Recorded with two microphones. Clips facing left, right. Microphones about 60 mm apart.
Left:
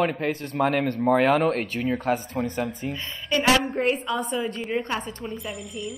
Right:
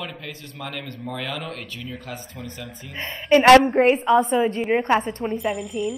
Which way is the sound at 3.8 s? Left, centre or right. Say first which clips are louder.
Right 7 dB; right.